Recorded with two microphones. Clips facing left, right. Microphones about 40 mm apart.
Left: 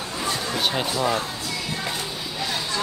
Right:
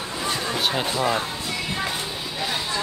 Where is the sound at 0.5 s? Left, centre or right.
Centre.